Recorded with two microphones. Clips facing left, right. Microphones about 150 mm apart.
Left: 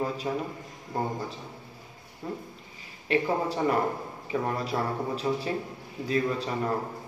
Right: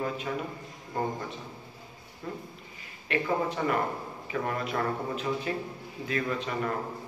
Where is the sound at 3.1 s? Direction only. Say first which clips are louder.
Left 2 dB; 35° left (ahead or behind).